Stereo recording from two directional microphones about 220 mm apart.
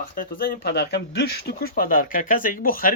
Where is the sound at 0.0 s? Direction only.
40° left (ahead or behind).